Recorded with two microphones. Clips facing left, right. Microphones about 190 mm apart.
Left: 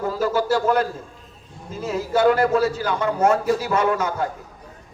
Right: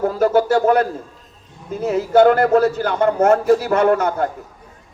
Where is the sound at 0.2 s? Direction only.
60° right (ahead or behind).